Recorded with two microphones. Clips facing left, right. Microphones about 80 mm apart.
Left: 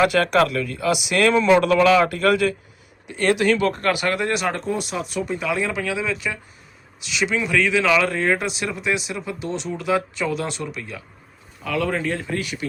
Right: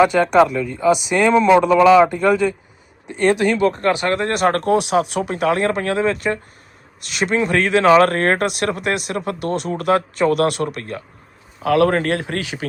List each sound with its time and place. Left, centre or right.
0.0 s a man's voice: right
0.8 s a man's voice: right
4.6 s speech: right
11.6 s speech: right